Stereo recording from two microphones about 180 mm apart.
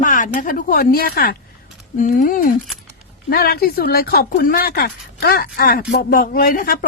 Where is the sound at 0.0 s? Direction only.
45° left (ahead or behind).